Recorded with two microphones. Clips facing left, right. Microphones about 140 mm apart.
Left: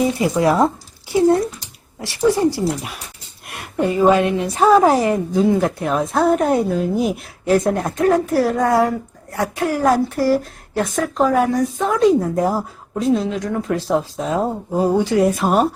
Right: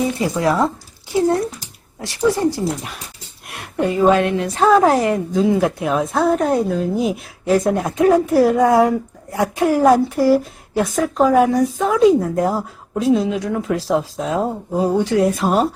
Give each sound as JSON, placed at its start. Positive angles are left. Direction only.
{"t": 0.2, "sound": "speech", "side_deg": 15}
{"t": 2.0, "sound": "a woman's voice", "side_deg": 5}